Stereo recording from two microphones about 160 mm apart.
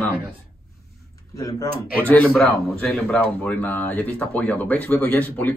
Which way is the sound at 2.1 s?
5° left (ahead or behind).